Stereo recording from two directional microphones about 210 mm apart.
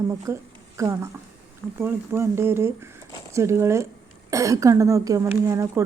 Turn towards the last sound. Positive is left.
turn(degrees=-15)  # may be behind; listen again after turning